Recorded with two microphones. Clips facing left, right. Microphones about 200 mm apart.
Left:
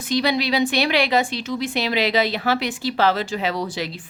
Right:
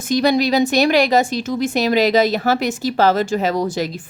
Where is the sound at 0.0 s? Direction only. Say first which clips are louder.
Right 5 dB; 45° right (ahead or behind).